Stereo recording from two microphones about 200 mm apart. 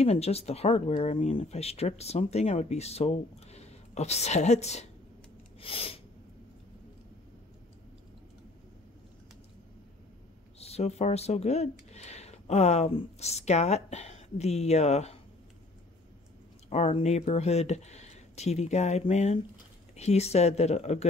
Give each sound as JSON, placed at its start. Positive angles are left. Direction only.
{"t": 0.0, "sound": "speech", "side_deg": 30}
{"t": 5.6, "sound": "a sound", "side_deg": 30}
{"t": 10.6, "sound": "speech", "side_deg": 30}
{"t": 16.6, "sound": "speech", "side_deg": 30}